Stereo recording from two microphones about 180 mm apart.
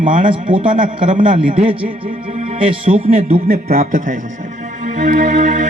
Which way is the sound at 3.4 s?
50° right (ahead or behind).